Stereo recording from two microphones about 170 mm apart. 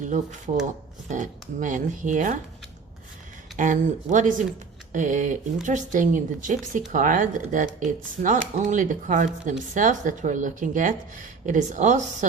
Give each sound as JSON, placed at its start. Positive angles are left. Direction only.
{"t": 0.0, "sound": "speech", "side_deg": -45}
{"t": 3.6, "sound": "speech", "side_deg": -50}